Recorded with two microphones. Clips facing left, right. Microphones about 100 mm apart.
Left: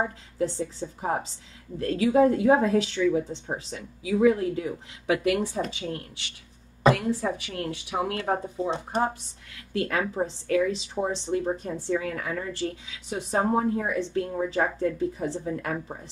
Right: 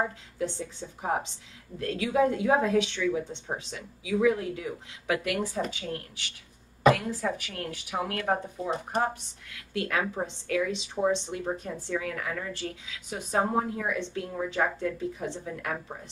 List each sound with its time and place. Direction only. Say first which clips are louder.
0.4 s speech: left 5 dB; 40° left (ahead or behind)
5.7 s a woman's voice: left 2 dB; 25° left (ahead or behind)
9.8 s speech: left 3 dB; 40° left (ahead or behind)